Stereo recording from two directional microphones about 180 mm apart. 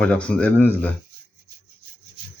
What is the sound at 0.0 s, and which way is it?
Speech, 5° left (ahead or behind).